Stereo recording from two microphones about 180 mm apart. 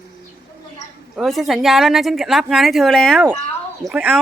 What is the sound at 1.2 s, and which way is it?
A woman's voice, centre (ahead or behind).